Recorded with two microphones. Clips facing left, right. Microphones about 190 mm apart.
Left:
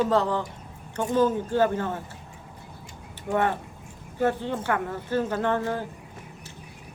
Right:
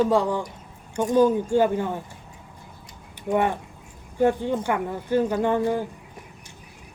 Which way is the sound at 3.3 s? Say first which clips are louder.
Right 2 dB; 15° right (ahead or behind).